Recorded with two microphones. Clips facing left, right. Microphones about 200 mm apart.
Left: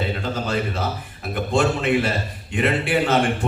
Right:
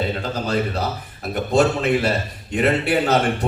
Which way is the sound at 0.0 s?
40° right (ahead or behind).